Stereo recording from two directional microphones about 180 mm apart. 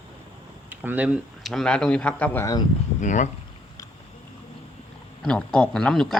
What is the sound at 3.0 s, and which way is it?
Speech, 40° left (ahead or behind).